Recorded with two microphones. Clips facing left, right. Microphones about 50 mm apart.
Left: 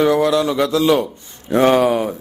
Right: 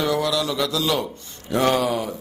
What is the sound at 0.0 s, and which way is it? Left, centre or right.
Mantra, left.